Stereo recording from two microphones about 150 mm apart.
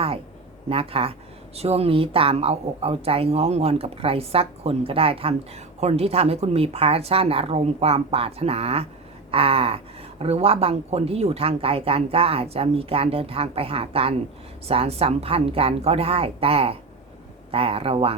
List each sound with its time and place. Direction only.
0.7 s speech: 40° right (ahead or behind)